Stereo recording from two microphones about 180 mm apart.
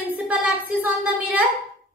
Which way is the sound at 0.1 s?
10° right (ahead or behind).